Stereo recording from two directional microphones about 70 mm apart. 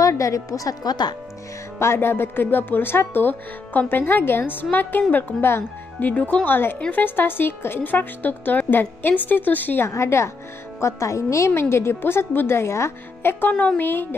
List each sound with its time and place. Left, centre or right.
0.0 s a woman's voice: left
1.8 s speech: left
9.8 s a woman's voice: left
13.5 s speech: left